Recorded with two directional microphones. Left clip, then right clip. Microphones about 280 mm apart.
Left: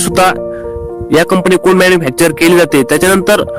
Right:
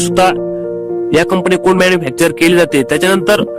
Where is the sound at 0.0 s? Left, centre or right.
Centre.